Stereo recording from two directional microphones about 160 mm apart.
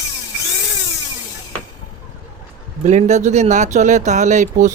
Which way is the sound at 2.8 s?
45° right (ahead or behind).